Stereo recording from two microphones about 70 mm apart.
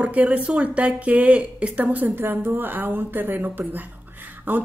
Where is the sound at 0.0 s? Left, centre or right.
Centre.